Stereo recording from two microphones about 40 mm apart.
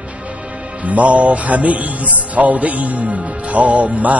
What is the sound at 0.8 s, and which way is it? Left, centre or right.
Music, right.